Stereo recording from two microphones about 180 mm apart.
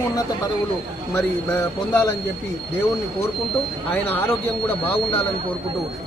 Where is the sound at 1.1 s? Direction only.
15° left (ahead or behind).